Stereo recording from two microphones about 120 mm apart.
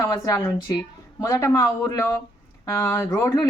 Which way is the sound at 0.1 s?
35° left (ahead or behind).